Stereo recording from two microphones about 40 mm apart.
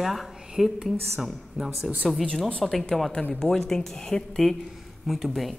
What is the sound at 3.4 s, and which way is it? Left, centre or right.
Speech, centre.